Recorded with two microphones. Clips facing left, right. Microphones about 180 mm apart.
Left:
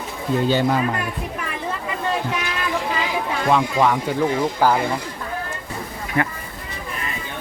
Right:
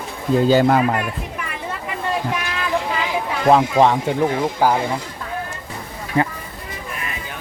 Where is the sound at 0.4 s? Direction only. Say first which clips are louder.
Right 5 dB; 40° right (ahead or behind).